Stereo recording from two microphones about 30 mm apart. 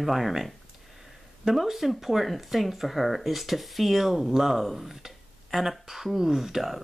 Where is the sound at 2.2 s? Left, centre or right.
Centre.